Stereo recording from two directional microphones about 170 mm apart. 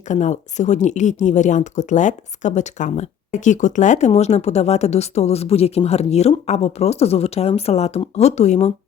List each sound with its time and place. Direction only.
0.1 s speech: 45° left (ahead or behind)